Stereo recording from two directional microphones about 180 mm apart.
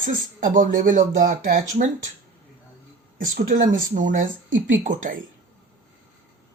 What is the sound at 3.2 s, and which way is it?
Speech, 45° right (ahead or behind).